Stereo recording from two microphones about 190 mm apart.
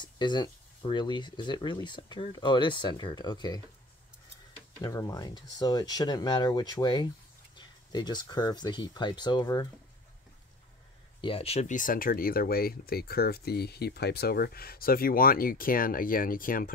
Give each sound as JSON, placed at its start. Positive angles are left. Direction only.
{"t": 0.0, "sound": "speech", "side_deg": 25}
{"t": 4.8, "sound": "speech", "side_deg": 20}
{"t": 11.1, "sound": "speech", "side_deg": 30}